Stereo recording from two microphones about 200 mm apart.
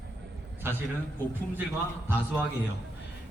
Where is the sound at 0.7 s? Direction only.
10° right (ahead or behind).